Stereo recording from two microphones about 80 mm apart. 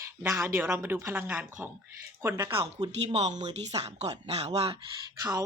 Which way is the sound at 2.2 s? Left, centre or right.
Right.